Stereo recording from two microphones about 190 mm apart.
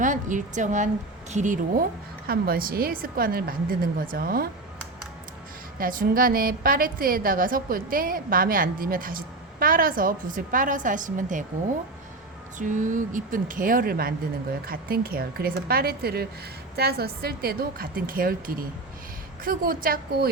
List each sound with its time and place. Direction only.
0.0 s a woman's voice: 40° right (ahead or behind)
2.2 s a woman's voice: 50° right (ahead or behind)
5.8 s a woman's voice: 50° right (ahead or behind)
12.5 s a woman's voice: 40° right (ahead or behind)